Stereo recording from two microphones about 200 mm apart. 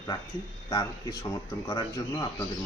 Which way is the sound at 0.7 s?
20° left (ahead or behind).